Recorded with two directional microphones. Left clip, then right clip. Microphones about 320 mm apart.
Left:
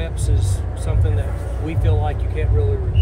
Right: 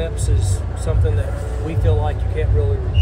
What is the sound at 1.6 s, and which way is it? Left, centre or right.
Speech, centre.